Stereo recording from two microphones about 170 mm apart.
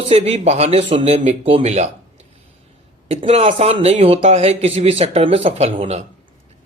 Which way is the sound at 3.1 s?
40° right (ahead or behind).